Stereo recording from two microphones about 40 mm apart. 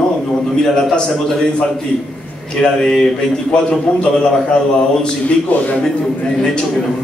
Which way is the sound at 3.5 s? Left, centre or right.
Left.